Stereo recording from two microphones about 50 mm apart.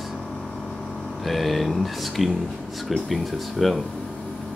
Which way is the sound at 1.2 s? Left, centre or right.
Centre.